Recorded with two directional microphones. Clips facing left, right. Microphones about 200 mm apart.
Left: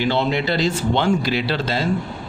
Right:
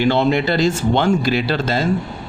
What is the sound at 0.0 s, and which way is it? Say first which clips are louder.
Speech: right 4 dB; 50° right (ahead or behind).